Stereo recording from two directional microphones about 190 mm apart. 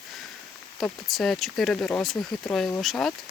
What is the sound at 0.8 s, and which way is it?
Speech, centre (ahead or behind).